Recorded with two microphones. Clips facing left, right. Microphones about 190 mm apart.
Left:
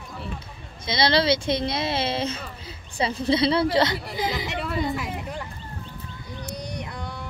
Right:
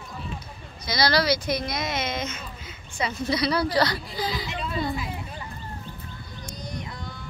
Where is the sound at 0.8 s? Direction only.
25° left (ahead or behind).